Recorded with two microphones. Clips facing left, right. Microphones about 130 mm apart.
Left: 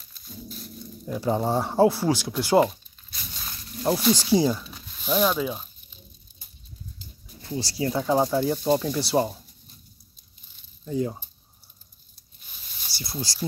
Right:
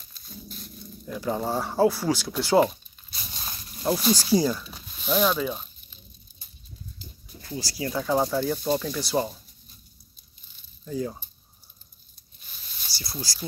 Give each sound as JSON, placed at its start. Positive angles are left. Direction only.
{"t": 1.2, "sound": "speech", "side_deg": 20}
{"t": 3.2, "sound": "a sound", "side_deg": -25}
{"t": 3.8, "sound": "speech", "side_deg": 25}
{"t": 5.0, "sound": "speech", "side_deg": 5}
{"t": 7.4, "sound": "speech", "side_deg": 30}
{"t": 10.9, "sound": "speech", "side_deg": 25}
{"t": 12.9, "sound": "a sound", "side_deg": 55}
{"t": 13.3, "sound": "speech", "side_deg": 25}